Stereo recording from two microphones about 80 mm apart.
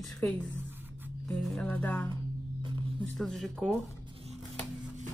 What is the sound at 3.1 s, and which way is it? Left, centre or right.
Speech, centre.